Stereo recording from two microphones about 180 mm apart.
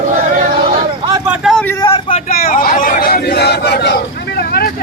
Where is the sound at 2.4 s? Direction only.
55° left (ahead or behind).